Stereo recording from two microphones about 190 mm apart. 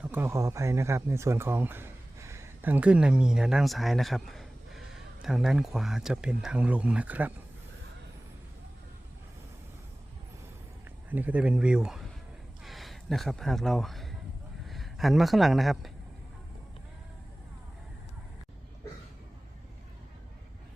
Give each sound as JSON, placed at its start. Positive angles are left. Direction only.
{"t": 0.0, "sound": "speech", "side_deg": -10}
{"t": 11.1, "sound": "speech", "side_deg": -10}